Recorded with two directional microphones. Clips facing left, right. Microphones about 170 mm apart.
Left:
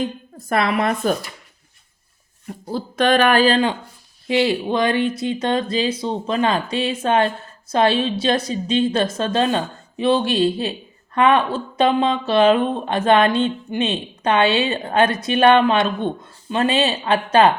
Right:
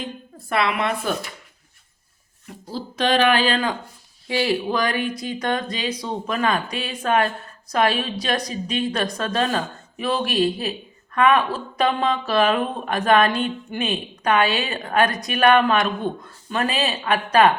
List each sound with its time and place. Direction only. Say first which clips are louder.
0.3 s speech: left 3 dB; 45° left (ahead or behind)
2.5 s speech: left 5 dB; 55° left (ahead or behind)
4.3 s a woman's voice: left 3 dB; 25° left (ahead or behind)